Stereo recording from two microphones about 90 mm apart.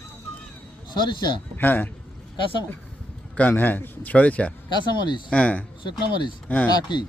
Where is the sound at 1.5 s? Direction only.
20° left (ahead or behind).